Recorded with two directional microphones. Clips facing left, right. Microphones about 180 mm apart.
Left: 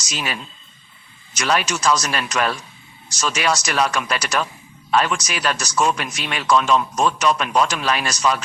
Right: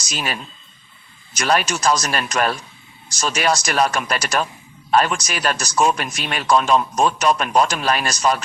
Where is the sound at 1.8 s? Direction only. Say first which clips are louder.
Right 1 dB; 35° right (ahead or behind).